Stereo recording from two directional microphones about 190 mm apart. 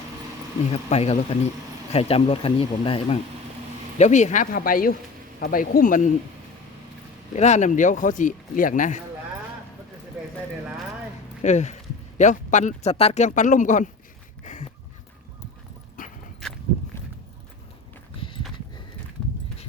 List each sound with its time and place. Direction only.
0.7 s speech: 35° left (ahead or behind)
7.3 s speech: 35° left (ahead or behind)
11.4 s speech: 40° left (ahead or behind)
14.4 s a sound: 40° left (ahead or behind)
16.0 s horse: 45° left (ahead or behind)
18.2 s a sound: 25° left (ahead or behind)